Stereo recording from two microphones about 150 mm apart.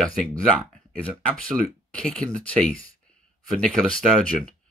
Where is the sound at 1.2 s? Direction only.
5° left (ahead or behind).